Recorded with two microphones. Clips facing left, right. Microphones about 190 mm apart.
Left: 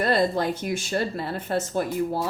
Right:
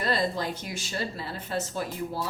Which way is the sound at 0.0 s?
55° left (ahead or behind).